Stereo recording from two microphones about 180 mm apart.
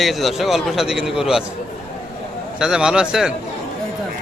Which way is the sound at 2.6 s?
5° right (ahead or behind).